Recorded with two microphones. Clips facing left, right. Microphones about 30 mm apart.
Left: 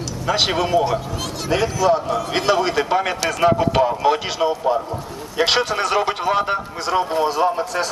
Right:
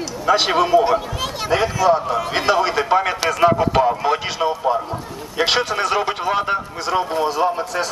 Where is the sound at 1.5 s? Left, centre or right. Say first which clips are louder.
Right 1 dB; centre.